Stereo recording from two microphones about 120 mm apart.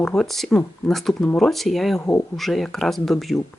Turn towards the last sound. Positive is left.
turn(degrees=0)  # may be behind; listen again after turning